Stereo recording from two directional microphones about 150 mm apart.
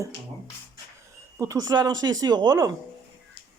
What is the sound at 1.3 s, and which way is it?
Speech, 20° right (ahead or behind).